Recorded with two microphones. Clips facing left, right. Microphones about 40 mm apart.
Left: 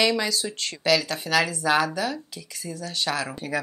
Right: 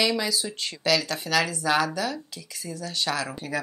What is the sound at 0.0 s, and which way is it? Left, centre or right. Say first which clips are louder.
Speech: left 2 dB; centre.